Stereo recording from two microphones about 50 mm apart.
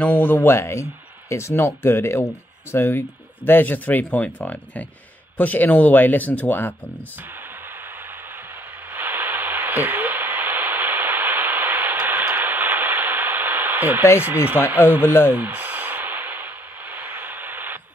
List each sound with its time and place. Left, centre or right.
0.0 s speech: left
0.5 s speech: left
1.3 s speech: left
8.9 s radio: right
14.2 s speech: right
15.3 s a sound: right